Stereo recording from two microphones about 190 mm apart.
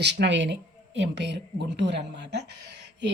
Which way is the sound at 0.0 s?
65° right (ahead or behind).